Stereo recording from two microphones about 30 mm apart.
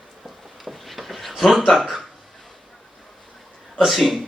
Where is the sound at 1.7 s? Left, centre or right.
Centre.